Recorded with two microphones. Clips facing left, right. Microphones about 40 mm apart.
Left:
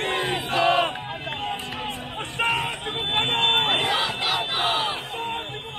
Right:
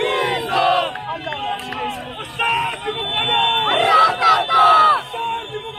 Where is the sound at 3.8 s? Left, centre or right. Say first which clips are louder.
Right 11 dB; right.